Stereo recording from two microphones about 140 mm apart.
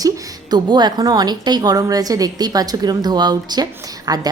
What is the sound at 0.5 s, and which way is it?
A woman's voice, 30° right (ahead or behind).